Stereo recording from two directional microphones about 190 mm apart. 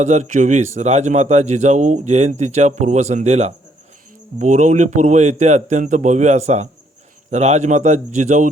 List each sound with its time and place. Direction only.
0.0 s speech: 40° right (ahead or behind)